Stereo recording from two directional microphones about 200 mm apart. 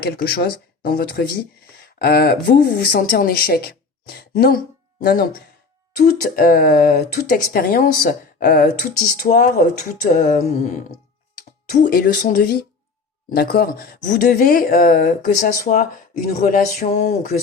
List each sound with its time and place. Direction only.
0.0 s speech: 50° left (ahead or behind)
11.7 s speech: 50° left (ahead or behind)